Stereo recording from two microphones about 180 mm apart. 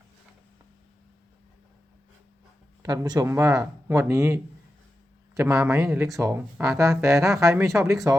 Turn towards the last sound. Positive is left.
turn(degrees=-15)  # may be behind; listen again after turning